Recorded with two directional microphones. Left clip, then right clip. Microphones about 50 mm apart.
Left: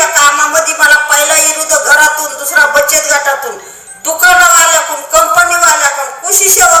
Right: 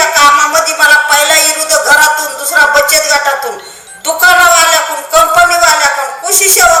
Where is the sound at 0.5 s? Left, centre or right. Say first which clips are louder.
Even; right.